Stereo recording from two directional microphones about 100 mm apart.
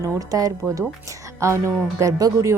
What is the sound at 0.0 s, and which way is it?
Speech, 35° right (ahead or behind).